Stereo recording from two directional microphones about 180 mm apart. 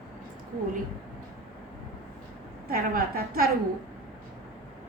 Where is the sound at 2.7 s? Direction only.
55° right (ahead or behind).